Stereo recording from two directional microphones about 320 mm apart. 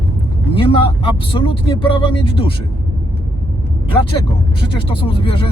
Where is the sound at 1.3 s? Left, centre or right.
Centre.